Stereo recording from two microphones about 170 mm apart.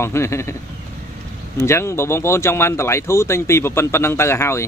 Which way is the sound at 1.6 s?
15° left (ahead or behind).